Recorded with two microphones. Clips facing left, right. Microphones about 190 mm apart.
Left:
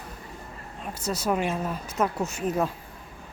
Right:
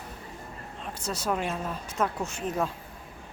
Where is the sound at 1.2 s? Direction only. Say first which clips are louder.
Left 3 dB; 5° left (ahead or behind).